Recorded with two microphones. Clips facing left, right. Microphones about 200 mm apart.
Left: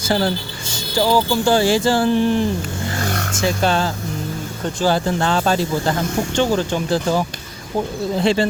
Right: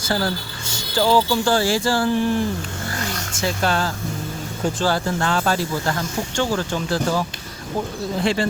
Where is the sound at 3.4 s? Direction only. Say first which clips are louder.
Left 3 dB; 20° left (ahead or behind).